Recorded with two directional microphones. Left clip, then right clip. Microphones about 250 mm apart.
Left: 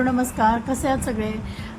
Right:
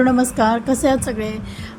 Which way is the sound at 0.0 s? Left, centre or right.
Right.